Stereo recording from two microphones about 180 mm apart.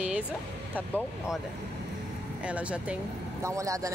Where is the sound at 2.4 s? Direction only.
5° right (ahead or behind).